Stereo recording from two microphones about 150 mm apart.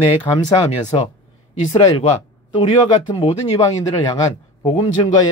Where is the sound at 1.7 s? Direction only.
25° left (ahead or behind).